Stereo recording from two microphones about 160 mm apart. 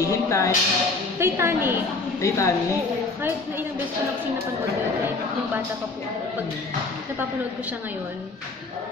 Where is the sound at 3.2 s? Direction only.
15° right (ahead or behind).